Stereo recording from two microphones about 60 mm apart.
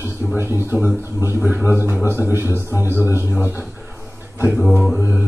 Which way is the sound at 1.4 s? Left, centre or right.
Right.